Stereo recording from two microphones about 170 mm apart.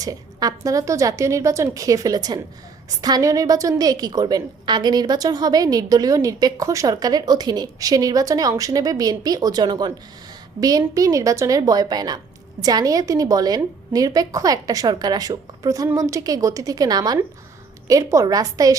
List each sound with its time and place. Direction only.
0.0 s a woman's voice: 20° right (ahead or behind)